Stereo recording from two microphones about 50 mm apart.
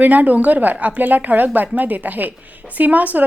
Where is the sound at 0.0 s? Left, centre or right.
Right.